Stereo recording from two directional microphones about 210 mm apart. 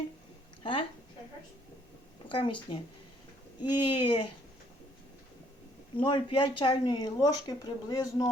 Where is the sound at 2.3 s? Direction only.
25° left (ahead or behind).